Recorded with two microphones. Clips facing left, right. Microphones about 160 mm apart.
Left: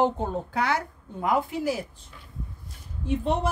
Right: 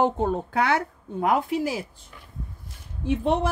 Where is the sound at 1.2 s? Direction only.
90° right.